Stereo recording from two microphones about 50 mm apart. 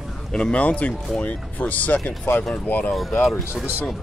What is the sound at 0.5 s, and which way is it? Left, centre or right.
Speech, left.